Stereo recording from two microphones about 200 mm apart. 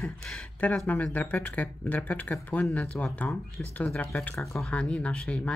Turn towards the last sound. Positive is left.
turn(degrees=5)  # may be behind; listen again after turning